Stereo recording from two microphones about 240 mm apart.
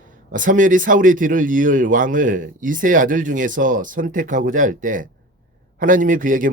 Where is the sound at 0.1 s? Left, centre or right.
Right.